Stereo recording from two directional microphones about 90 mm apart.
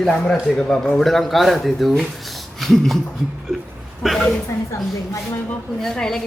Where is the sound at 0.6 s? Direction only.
15° left (ahead or behind).